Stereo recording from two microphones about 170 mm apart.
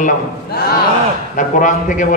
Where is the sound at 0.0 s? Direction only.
65° left (ahead or behind).